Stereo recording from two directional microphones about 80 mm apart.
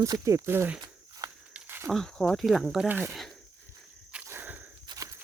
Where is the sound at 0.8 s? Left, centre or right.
Right.